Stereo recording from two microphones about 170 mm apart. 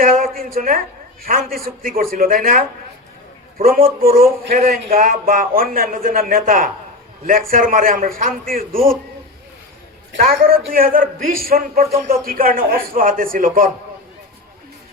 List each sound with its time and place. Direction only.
0.0 s a woman's voice: 55° right (ahead or behind)
10.2 s speech: 60° right (ahead or behind)